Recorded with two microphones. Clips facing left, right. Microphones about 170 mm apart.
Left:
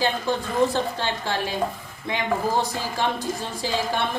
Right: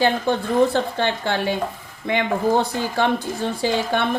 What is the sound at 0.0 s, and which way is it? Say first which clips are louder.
Speech: right 5 dB; 60° right (ahead or behind).